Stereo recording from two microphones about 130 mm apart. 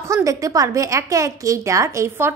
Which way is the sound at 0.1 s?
25° right (ahead or behind).